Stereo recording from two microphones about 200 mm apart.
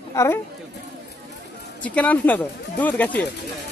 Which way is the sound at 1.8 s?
5° left (ahead or behind).